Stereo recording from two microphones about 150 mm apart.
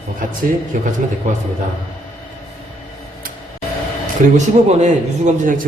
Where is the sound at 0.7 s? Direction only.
65° right (ahead or behind).